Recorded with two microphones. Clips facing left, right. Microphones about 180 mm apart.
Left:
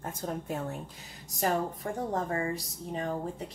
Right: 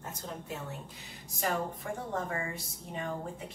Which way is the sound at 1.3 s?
40° left (ahead or behind).